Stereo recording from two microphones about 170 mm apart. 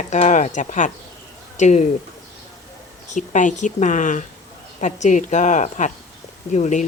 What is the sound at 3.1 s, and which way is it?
Speech, 45° left (ahead or behind).